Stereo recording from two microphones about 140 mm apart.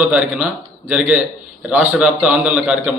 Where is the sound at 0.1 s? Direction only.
10° right (ahead or behind).